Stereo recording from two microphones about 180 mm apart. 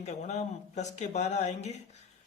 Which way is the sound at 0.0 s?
40° left (ahead or behind).